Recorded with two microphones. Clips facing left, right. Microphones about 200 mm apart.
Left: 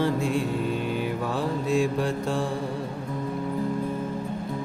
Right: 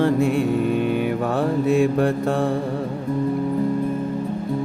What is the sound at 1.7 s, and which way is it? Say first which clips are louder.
Mantra: right 5 dB; 60° right (ahead or behind).